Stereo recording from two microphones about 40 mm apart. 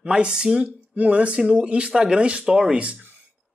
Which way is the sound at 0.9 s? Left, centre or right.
Right.